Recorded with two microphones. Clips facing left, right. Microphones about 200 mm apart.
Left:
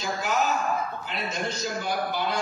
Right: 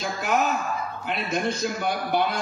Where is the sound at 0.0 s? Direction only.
55° right (ahead or behind).